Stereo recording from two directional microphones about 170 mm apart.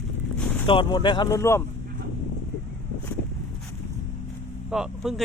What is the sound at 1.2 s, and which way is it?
Speech, 15° left (ahead or behind).